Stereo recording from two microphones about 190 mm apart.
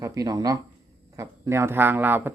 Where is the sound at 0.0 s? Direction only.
20° right (ahead or behind).